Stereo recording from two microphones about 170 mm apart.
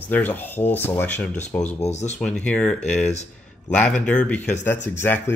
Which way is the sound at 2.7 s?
40° left (ahead or behind).